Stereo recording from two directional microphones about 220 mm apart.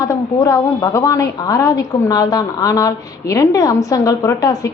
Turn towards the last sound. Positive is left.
turn(degrees=15)  # may be behind; listen again after turning